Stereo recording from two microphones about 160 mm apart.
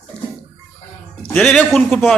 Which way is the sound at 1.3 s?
5° left (ahead or behind).